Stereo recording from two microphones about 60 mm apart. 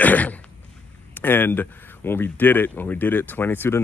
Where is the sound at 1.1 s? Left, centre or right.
Left.